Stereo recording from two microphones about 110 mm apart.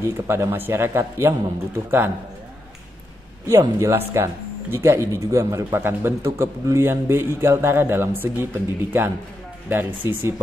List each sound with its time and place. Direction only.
0.0 s speech: 25° right (ahead or behind)
3.4 s speech: 25° right (ahead or behind)